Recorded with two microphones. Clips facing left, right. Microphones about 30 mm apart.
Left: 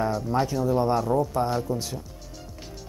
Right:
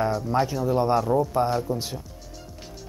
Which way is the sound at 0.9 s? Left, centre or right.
Centre.